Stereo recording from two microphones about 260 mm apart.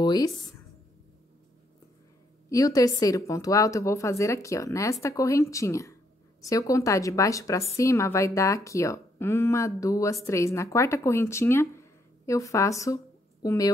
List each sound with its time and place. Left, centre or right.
0.0 s speech: centre
2.5 s a woman's voice: centre